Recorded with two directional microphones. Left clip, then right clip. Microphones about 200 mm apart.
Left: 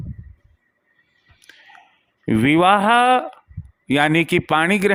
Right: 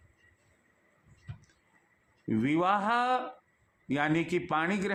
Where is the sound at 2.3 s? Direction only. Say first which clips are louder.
Left 13 dB; 50° left (ahead or behind).